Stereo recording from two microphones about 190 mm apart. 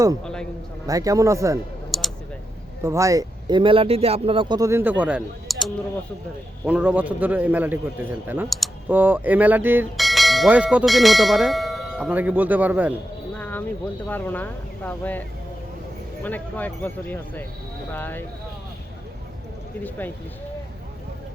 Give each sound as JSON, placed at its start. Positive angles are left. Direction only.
{"t": 0.9, "sound": "a man's voice", "side_deg": -20}
{"t": 1.9, "sound": "a sound", "side_deg": 0}
{"t": 2.8, "sound": "a man's voice", "side_deg": -15}
{"t": 13.3, "sound": "a sound", "side_deg": 10}
{"t": 14.1, "sound": "speech", "side_deg": 10}
{"t": 16.2, "sound": "speech", "side_deg": 10}